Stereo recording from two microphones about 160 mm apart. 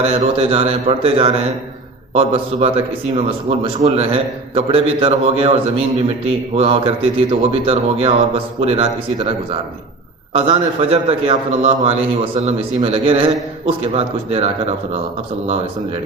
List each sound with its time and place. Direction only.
0.0 s a man's voice: 40° right (ahead or behind)
10.3 s a man's voice: 35° right (ahead or behind)